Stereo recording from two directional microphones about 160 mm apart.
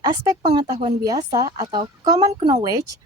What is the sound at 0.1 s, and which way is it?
Speech, 30° right (ahead or behind).